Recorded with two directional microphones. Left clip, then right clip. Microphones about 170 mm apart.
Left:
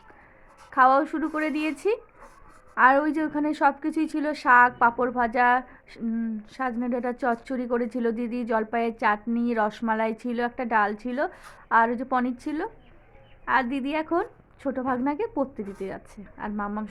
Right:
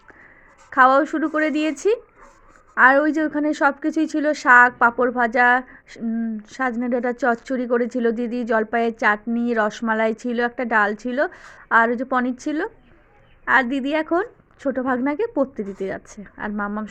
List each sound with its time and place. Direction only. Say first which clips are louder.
0.7 s speech: right 4 dB; 20° right (ahead or behind)